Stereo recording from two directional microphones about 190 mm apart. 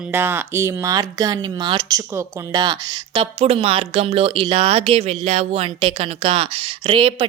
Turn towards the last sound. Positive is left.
turn(degrees=-25)  # may be behind; listen again after turning